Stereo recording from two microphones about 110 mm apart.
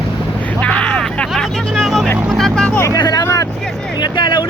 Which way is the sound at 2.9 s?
35° left (ahead or behind).